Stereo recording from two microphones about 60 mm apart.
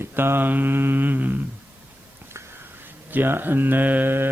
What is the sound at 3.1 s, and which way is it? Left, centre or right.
Speech, right.